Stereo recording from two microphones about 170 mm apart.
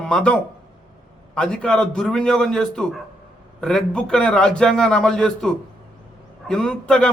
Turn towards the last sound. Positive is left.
turn(degrees=5)  # may be behind; listen again after turning